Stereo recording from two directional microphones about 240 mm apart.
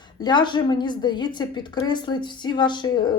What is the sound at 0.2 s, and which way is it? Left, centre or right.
A woman's voice, centre.